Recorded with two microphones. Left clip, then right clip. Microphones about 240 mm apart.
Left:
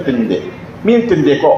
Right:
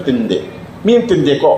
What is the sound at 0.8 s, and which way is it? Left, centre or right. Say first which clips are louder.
Speech: even; right.